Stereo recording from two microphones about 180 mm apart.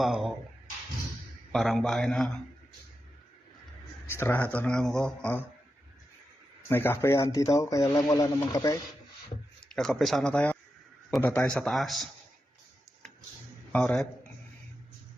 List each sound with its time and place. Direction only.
0.0 s a man's voice: centre (ahead or behind)
1.5 s a man's voice: centre (ahead or behind)
4.0 s speech: 10° left (ahead or behind)
6.7 s speech: 10° left (ahead or behind)
9.6 s a man's voice: 5° left (ahead or behind)
13.7 s a man's voice: 5° left (ahead or behind)